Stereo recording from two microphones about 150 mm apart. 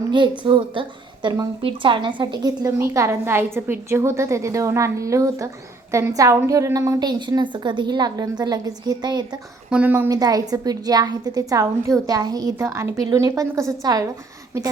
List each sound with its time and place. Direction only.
0.1 s a woman's voice: 30° right (ahead or behind)
9.6 s speech: 10° right (ahead or behind)
10.1 s a woman's voice: 25° right (ahead or behind)